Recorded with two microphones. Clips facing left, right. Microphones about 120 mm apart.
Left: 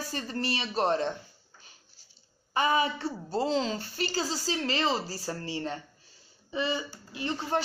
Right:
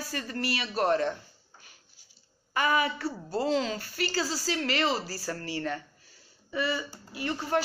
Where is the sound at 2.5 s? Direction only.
25° left (ahead or behind).